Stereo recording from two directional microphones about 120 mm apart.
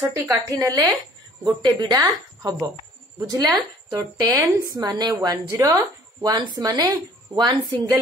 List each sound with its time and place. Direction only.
0.0 s a woman's voice: 25° right (ahead or behind)